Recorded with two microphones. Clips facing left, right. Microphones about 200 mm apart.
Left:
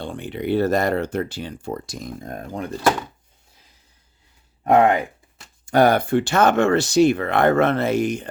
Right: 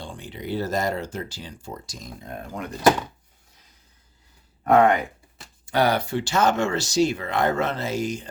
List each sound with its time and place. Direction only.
0.0 s speech: 60° left (ahead or behind)
2.5 s speech: 30° left (ahead or behind)
4.6 s speech: 25° left (ahead or behind)
5.6 s speech: 50° left (ahead or behind)